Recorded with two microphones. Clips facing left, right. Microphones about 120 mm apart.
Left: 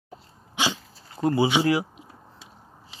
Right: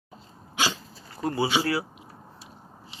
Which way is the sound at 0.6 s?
20° left (ahead or behind).